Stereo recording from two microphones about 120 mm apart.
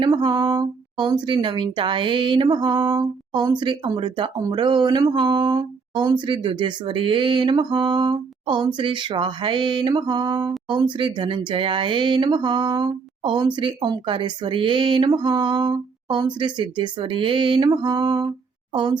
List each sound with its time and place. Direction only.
0.1 s speech: 30° right (ahead or behind)